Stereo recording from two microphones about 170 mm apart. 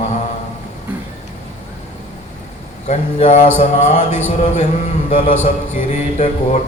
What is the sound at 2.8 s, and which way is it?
A man's voice, 40° left (ahead or behind).